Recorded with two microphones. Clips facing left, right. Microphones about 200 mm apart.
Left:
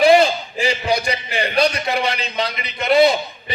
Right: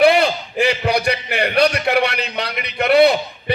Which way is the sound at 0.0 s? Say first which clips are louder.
Left 1 dB; 65° right (ahead or behind).